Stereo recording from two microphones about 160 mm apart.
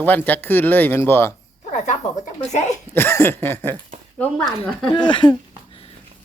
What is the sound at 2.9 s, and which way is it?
Speech, 15° left (ahead or behind).